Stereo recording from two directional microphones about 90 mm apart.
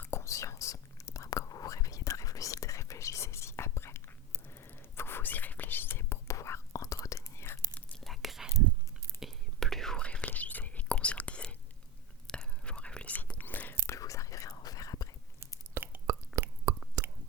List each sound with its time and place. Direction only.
0.0 s whispering: 30° left (ahead or behind)
8.0 s whispering: centre (ahead or behind); by 13.7 s 20° left (ahead or behind)
13.8 s whispering: 35° left (ahead or behind)
15.7 s a sound: 20° right (ahead or behind)
16.4 s whispering: 35° right (ahead or behind)
17.0 s chewing: 35° right (ahead or behind)